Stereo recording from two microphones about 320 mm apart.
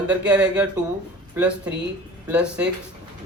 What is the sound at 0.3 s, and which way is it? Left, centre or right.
Speech, centre.